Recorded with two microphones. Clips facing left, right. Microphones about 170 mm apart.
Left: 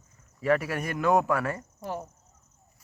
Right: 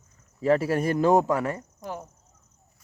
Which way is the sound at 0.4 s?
30° right (ahead or behind).